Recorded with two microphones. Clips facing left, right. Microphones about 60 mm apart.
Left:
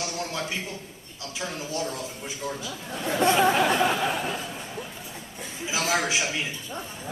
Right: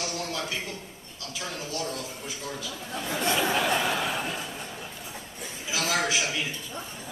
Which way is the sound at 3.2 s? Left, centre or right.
Left.